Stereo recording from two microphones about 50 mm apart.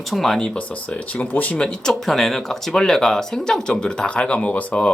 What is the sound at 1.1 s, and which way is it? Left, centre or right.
Speech, left.